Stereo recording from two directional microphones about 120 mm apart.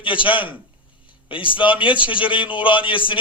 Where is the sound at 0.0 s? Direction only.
45° left (ahead or behind).